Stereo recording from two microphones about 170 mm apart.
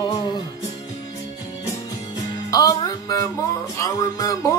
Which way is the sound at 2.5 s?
20° left (ahead or behind).